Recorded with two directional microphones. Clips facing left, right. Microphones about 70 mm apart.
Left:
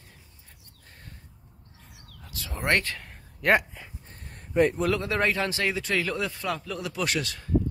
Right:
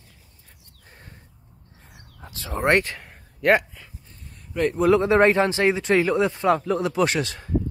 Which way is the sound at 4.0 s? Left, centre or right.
Left.